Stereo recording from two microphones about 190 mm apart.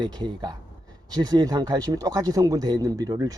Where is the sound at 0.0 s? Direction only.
25° right (ahead or behind).